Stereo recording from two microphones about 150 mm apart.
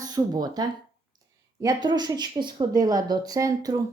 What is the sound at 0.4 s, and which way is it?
A woman's voice, 25° right (ahead or behind).